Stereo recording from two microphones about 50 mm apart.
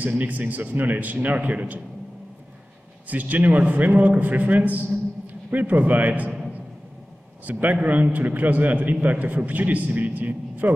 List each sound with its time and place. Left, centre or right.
0.0 s a man's voice: right
3.1 s a man's voice: right
7.4 s a man's voice: right